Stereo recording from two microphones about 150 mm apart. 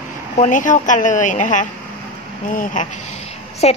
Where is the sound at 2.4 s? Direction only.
60° left (ahead or behind); by 3.7 s 45° left (ahead or behind).